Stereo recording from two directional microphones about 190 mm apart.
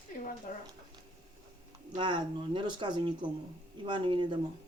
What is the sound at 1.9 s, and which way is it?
Speech, 25° right (ahead or behind).